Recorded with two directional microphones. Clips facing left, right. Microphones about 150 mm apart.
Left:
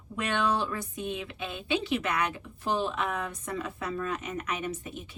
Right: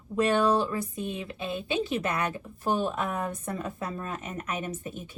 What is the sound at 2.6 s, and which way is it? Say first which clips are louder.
A woman's voice: right 2 dB; 45° right (ahead or behind).